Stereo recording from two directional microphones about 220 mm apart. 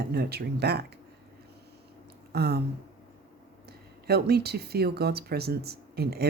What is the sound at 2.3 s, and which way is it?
Speech, 45° right (ahead or behind).